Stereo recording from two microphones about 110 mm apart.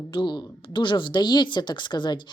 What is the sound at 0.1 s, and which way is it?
Speech, 45° left (ahead or behind).